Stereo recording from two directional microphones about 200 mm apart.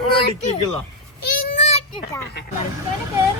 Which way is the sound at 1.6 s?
35° left (ahead or behind).